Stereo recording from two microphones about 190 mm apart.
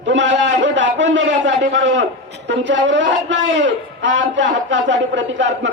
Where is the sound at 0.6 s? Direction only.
70° right (ahead or behind).